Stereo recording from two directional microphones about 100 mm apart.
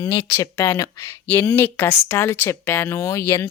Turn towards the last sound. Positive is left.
turn(degrees=25)  # may be behind; listen again after turning